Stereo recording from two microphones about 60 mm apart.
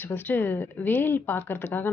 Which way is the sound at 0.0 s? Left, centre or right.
Left.